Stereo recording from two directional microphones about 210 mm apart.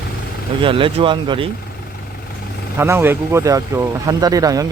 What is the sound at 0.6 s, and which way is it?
Speech, 25° right (ahead or behind).